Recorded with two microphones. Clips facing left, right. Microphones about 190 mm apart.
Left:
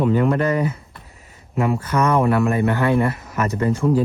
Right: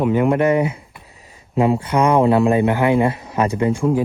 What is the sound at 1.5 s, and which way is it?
Speech, 30° right (ahead or behind).